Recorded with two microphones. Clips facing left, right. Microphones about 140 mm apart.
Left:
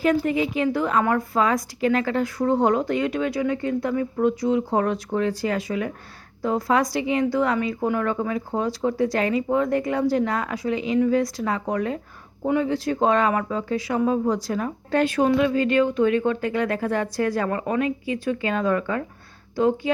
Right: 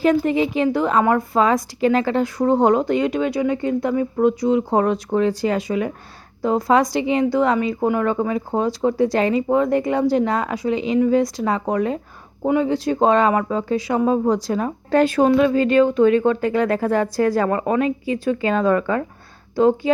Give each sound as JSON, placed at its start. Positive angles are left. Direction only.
{"t": 0.3, "sound": "speech", "side_deg": -25}
{"t": 14.8, "sound": "a woman's voice", "side_deg": -35}